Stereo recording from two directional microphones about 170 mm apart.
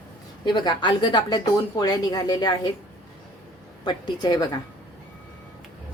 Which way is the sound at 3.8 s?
25° left (ahead or behind).